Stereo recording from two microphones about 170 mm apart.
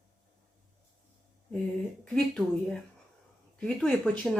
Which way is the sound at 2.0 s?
5° left (ahead or behind).